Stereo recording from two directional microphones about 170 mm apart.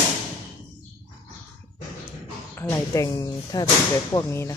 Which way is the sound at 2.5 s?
15° left (ahead or behind).